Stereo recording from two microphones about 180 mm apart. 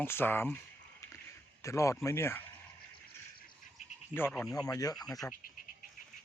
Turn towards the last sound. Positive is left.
turn(degrees=20)  # may be behind; listen again after turning